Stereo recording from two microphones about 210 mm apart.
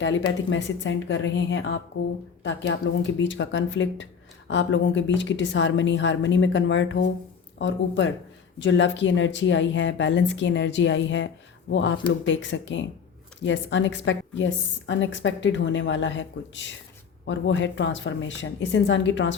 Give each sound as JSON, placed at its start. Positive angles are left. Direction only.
{"t": 0.5, "sound": "a woman's voice", "side_deg": 60}